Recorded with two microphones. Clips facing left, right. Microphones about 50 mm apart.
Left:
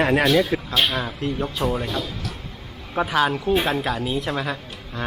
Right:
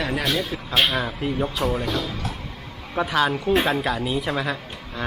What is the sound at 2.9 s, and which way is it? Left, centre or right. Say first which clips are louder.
Speech: left 1 dB; centre.